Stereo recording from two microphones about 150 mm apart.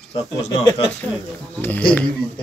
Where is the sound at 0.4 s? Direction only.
25° left (ahead or behind).